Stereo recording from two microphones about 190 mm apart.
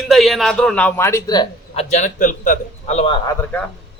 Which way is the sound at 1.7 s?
40° left (ahead or behind).